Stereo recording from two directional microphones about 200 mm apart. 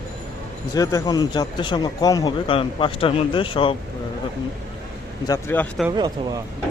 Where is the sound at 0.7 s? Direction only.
15° left (ahead or behind).